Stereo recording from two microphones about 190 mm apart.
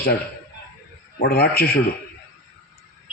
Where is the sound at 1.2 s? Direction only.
55° left (ahead or behind).